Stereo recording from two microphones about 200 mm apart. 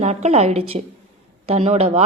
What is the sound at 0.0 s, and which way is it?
Speech, 35° right (ahead or behind).